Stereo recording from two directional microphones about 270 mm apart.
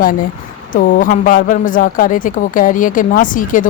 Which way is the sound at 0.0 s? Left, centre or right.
Left.